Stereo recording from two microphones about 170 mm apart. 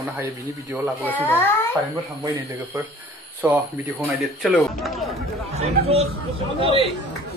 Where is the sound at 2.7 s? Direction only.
10° right (ahead or behind).